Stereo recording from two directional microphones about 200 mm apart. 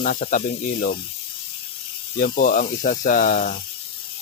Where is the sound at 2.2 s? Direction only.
45° left (ahead or behind).